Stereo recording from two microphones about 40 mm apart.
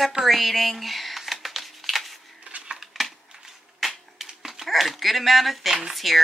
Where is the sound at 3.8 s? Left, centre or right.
Centre.